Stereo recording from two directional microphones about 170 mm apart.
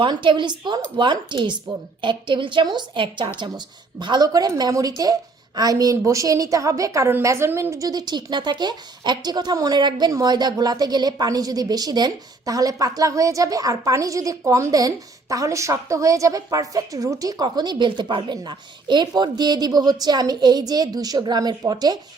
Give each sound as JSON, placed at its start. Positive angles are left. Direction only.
{"t": 0.0, "sound": "a woman's voice", "side_deg": -30}